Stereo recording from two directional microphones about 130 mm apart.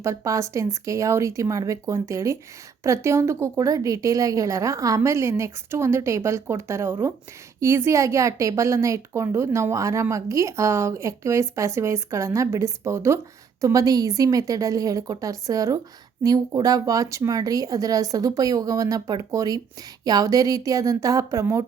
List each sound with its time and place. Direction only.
0.0 s a woman's voice: 25° right (ahead or behind)